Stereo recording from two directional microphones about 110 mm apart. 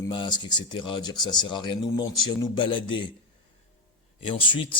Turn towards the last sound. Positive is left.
turn(degrees=50)  # may be behind; listen again after turning